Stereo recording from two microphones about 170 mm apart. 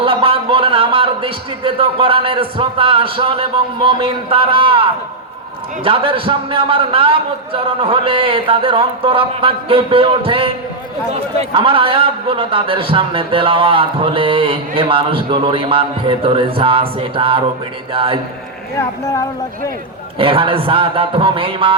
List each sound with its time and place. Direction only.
0.0 s a man's voice: 30° right (ahead or behind)
20.1 s a man's voice: 30° right (ahead or behind)